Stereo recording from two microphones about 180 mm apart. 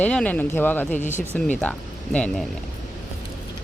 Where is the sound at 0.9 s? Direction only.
40° left (ahead or behind).